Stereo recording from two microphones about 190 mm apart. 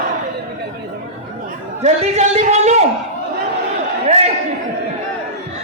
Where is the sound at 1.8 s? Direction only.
35° right (ahead or behind).